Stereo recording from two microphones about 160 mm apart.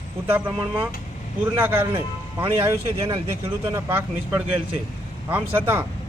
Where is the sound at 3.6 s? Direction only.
15° right (ahead or behind).